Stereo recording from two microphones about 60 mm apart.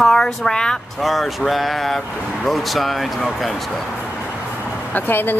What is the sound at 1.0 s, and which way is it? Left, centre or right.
Speech, centre.